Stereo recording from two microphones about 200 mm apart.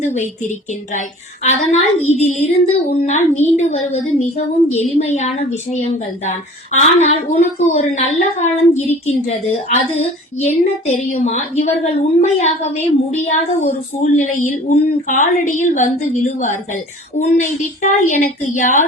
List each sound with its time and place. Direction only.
0.0 s speech: 35° left (ahead or behind)